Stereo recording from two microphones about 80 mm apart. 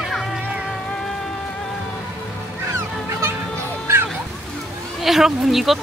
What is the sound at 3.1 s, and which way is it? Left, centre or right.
Music, right.